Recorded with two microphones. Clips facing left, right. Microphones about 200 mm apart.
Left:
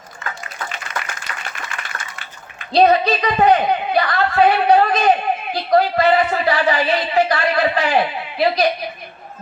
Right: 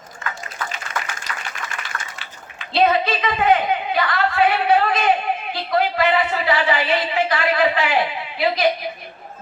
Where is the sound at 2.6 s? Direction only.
40° left (ahead or behind).